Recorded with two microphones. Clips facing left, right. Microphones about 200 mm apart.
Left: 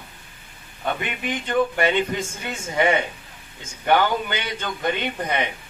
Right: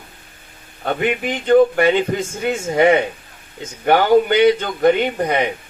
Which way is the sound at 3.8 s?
45° right (ahead or behind).